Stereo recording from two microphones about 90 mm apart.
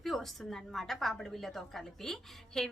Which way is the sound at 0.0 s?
5° left (ahead or behind).